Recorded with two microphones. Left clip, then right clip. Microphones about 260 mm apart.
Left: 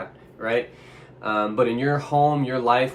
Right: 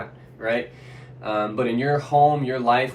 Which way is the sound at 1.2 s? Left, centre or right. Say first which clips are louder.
Left 2 dB; centre.